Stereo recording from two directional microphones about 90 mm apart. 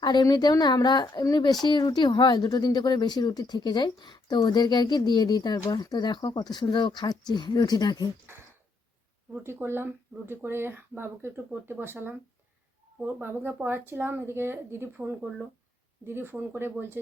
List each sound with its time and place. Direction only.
0.0 s speech: 55° left (ahead or behind)
9.3 s speech: 25° right (ahead or behind)
13.1 s speech: 20° right (ahead or behind)